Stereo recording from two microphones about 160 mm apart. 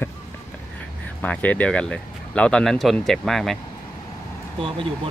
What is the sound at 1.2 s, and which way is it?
Speech, 10° left (ahead or behind).